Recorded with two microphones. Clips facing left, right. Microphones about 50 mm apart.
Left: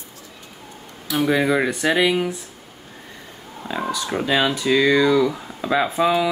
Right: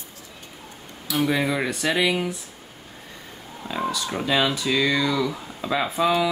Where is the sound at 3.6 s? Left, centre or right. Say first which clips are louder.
Left 1 dB; centre.